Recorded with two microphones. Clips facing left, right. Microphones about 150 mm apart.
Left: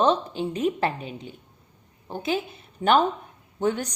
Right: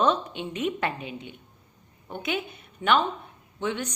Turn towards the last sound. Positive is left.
turn(degrees=40)  # may be behind; listen again after turning